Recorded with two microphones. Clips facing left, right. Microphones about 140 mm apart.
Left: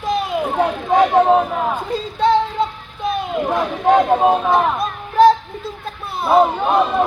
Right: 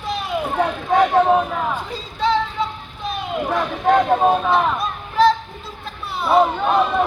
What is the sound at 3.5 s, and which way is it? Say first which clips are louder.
Speech: left 2 dB; 15° left (ahead or behind).